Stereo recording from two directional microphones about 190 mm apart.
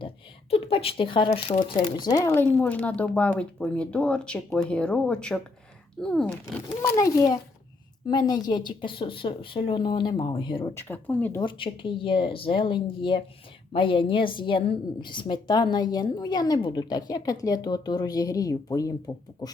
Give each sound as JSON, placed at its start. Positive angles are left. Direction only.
{"t": 0.5, "sound": "speech", "side_deg": 30}
{"t": 6.9, "sound": "a woman's voice", "side_deg": 20}
{"t": 10.6, "sound": "speech", "side_deg": 10}
{"t": 11.3, "sound": "a woman's voice", "side_deg": 25}